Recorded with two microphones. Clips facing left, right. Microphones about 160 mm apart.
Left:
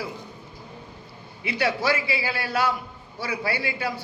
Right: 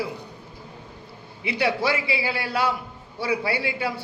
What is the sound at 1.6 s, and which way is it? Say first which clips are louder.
A man's voice: right 1 dB; 25° right (ahead or behind).